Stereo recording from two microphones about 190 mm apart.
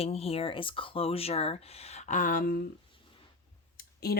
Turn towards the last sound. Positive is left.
turn(degrees=55)  # may be behind; listen again after turning